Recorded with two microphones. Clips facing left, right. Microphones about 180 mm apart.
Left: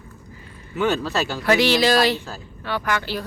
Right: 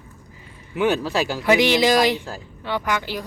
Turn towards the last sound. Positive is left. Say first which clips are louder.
# even
turn(degrees=-15)  # may be behind; listen again after turning